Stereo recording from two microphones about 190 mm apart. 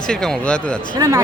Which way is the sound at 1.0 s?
15° right (ahead or behind).